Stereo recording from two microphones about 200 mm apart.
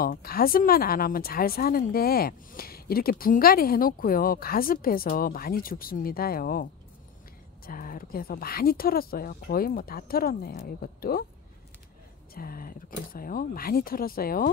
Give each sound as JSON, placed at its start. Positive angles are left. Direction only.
{"t": 0.0, "sound": "speech", "side_deg": 45}
{"t": 12.4, "sound": "speech", "side_deg": 45}